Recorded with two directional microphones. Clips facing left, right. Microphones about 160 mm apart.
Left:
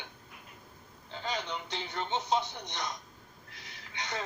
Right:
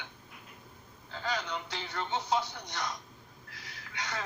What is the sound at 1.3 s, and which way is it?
Speech, 20° left (ahead or behind).